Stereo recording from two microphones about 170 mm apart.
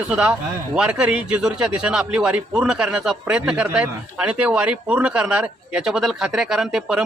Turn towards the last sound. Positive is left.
turn(degrees=-5)  # may be behind; listen again after turning